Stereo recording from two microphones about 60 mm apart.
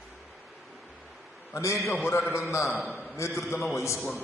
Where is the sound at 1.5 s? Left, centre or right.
Left.